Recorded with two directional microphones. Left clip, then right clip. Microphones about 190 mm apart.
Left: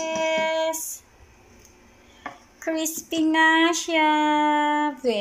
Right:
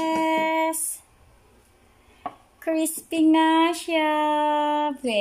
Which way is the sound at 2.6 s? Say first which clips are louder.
Right 2 dB; 15° right (ahead or behind).